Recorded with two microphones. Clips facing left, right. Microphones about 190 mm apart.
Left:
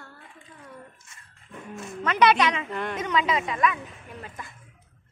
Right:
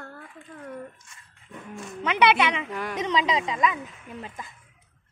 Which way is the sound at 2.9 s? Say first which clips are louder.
Right 1 dB; 20° right (ahead or behind).